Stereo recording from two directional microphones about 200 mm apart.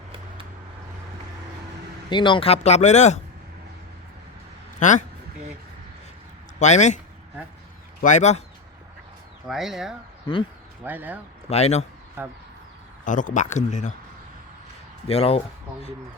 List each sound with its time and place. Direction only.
2.0 s speech: 25° left (ahead or behind)
4.8 s speech: 40° left (ahead or behind)
6.6 s speech: 35° left (ahead or behind)
8.0 s speech: 35° left (ahead or behind)
9.5 s speech: centre (ahead or behind)
10.3 s speech: 25° left (ahead or behind)
10.8 s speech: 10° right (ahead or behind)
11.4 s speech: 30° left (ahead or behind)
12.2 s speech: 10° right (ahead or behind)
13.1 s speech: 40° left (ahead or behind)
15.0 s speech: 30° left (ahead or behind)